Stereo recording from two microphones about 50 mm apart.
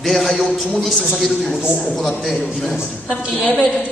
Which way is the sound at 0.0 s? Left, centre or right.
Centre.